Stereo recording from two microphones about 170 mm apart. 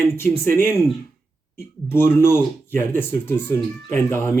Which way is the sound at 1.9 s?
15° left (ahead or behind).